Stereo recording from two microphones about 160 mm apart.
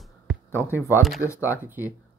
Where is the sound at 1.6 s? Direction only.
10° right (ahead or behind).